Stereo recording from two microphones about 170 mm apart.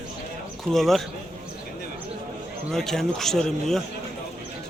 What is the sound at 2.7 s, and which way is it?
Speech, 5° left (ahead or behind).